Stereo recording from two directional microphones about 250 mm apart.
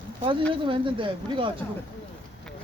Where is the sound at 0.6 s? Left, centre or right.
Centre.